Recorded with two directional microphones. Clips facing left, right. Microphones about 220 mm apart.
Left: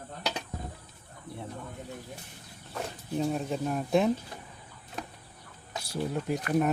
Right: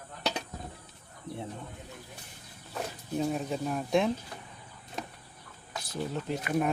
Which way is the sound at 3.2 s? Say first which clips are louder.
Left 1 dB; centre (ahead or behind).